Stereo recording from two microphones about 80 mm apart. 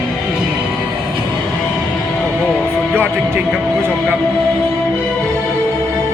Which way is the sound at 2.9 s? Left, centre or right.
Right.